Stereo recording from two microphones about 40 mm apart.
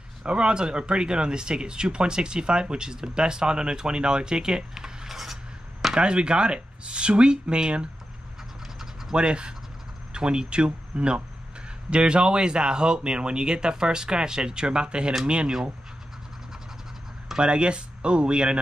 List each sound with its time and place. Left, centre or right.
0.2 s speech: right; by 5.9 s centre
5.9 s speech: right
9.1 s speech: right
17.4 s speech: right